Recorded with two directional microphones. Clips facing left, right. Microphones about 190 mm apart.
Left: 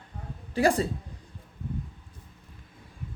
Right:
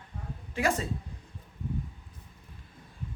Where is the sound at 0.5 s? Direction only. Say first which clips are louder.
Left 6 dB; 35° left (ahead or behind).